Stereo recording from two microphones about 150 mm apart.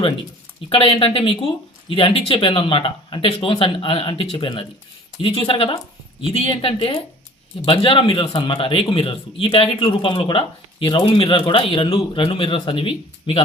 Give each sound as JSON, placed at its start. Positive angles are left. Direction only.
{"t": 0.7, "sound": "speech", "side_deg": 35}